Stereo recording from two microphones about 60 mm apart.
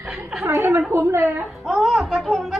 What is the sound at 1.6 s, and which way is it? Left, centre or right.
Speech, centre.